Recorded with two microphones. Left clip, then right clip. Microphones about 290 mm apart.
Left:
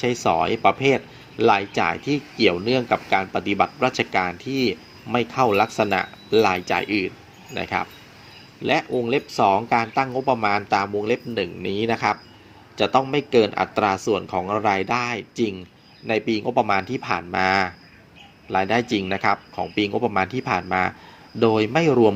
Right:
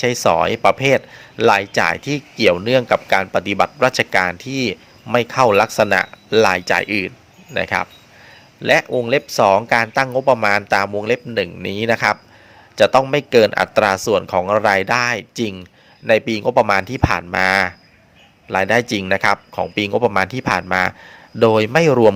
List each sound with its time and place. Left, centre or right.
0.0 s speech: right